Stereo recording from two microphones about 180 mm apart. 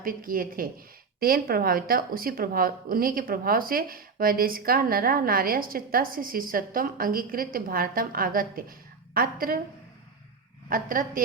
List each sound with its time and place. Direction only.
0.0 s speech: 50° right (ahead or behind)
10.7 s speech: 50° right (ahead or behind)